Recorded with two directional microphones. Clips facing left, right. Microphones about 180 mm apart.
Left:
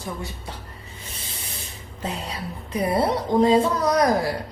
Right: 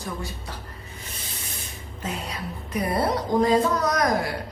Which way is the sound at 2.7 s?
25° left (ahead or behind).